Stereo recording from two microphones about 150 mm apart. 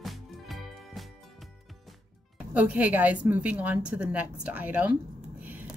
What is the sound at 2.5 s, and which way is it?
A woman's voice, 10° right (ahead or behind).